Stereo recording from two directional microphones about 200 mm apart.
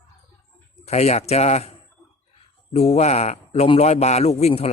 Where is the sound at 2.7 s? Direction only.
35° left (ahead or behind).